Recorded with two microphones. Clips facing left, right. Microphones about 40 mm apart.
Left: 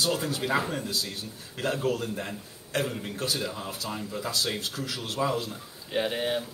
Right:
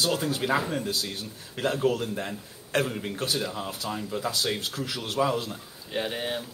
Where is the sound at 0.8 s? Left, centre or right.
Right.